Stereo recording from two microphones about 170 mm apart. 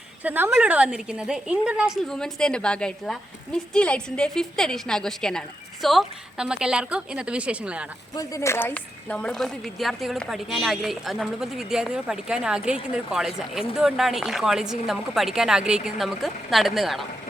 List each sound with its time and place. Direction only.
0.2 s a woman's voice: 10° right (ahead or behind)
8.1 s a woman's voice: 20° left (ahead or behind); by 17.0 s centre (ahead or behind)